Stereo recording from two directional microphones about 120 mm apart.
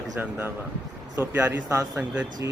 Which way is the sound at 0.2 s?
20° right (ahead or behind).